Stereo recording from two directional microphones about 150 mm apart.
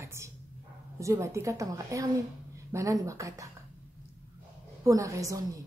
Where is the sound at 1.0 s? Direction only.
20° right (ahead or behind).